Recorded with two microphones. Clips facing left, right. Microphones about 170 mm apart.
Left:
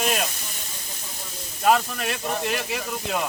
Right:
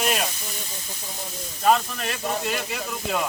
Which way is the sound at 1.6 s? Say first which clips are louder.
Even; centre (ahead or behind).